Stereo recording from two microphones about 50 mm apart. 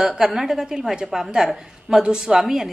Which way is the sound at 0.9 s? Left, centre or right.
Centre.